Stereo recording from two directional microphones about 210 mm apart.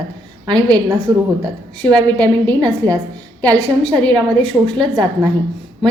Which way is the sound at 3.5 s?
5° left (ahead or behind).